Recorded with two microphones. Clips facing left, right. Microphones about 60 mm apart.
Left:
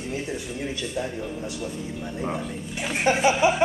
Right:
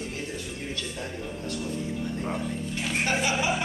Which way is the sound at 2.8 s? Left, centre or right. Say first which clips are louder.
Left 7 dB; left.